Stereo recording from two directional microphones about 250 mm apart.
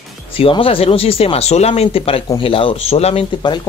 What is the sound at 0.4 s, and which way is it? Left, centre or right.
Speech, left.